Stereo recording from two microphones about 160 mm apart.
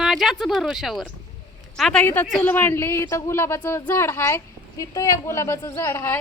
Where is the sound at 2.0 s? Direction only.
10° left (ahead or behind).